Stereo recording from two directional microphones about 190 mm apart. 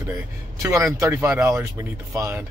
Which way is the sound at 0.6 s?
15° right (ahead or behind).